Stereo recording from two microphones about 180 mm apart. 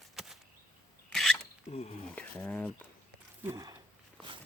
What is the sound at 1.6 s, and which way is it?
Speech, 35° left (ahead or behind).